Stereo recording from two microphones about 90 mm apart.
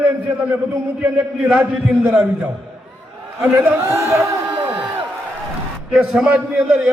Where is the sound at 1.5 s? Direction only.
10° right (ahead or behind).